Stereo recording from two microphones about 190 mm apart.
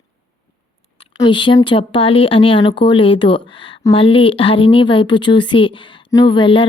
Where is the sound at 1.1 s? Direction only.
25° left (ahead or behind).